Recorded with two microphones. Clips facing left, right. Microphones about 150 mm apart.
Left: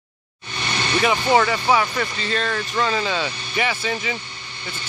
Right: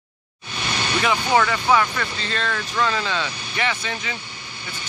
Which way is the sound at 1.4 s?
20° left (ahead or behind).